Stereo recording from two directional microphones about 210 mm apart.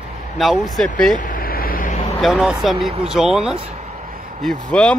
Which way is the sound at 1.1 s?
40° left (ahead or behind).